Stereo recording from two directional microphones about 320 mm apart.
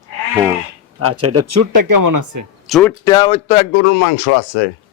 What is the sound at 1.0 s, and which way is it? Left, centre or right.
Speech, right.